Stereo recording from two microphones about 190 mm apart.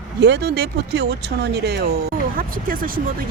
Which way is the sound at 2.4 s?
50° right (ahead or behind).